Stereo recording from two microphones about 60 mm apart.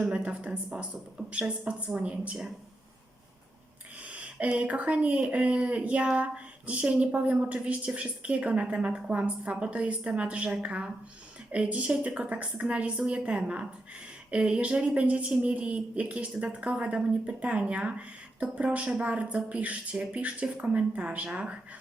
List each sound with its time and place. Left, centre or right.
0.0 s speech: right
4.1 s speech: right